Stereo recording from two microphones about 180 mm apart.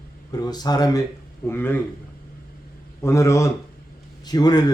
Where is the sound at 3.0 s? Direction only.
15° left (ahead or behind).